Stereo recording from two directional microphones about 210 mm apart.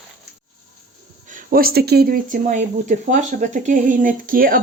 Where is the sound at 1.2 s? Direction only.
40° right (ahead or behind).